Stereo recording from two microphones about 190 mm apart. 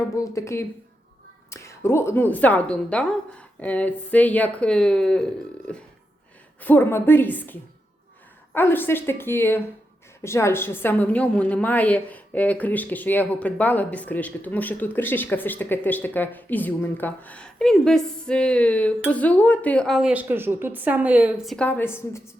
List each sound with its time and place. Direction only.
0.3 s a woman's voice: 15° left (ahead or behind)
5.7 s a sound: 5° left (ahead or behind)
6.6 s a woman's voice: 10° left (ahead or behind)